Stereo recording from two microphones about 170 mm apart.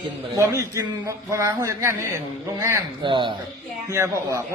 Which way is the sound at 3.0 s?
30° right (ahead or behind).